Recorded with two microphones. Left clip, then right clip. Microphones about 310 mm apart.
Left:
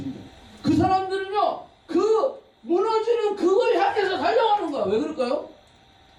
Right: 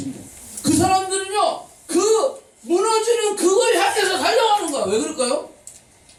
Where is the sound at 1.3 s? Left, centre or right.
Centre.